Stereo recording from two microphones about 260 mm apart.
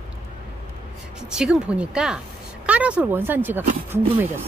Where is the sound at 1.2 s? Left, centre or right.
Centre.